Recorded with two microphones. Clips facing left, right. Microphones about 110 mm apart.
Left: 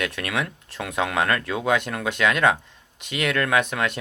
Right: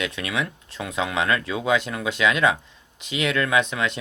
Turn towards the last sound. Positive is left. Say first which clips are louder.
# even
turn(degrees=55)  # may be behind; listen again after turning